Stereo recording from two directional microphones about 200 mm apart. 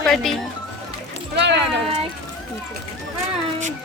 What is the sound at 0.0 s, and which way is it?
Speech, centre (ahead or behind).